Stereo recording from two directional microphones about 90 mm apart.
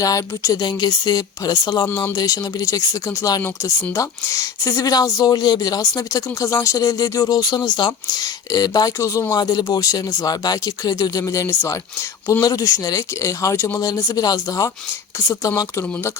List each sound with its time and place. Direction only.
0.0 s speech: 40° left (ahead or behind)
0.8 s speech: 50° left (ahead or behind)
9.3 s speech: 50° left (ahead or behind)